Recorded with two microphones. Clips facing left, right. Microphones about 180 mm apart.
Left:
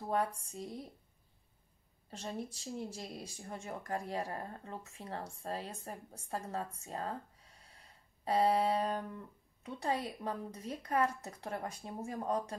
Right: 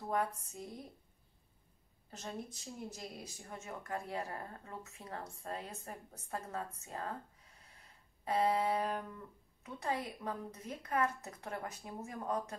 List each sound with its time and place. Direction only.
0.1 s speech: 30° left (ahead or behind)
2.0 s speech: 30° left (ahead or behind)
8.3 s speech: 35° left (ahead or behind)